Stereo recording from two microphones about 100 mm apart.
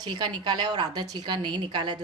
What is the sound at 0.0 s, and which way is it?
A woman's voice, 45° right (ahead or behind).